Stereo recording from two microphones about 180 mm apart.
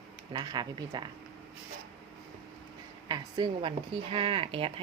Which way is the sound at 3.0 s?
25° right (ahead or behind).